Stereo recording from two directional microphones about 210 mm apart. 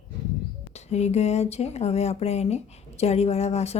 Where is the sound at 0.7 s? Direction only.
30° left (ahead or behind).